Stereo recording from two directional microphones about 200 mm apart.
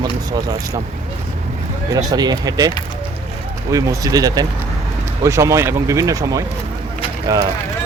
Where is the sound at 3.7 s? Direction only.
15° right (ahead or behind).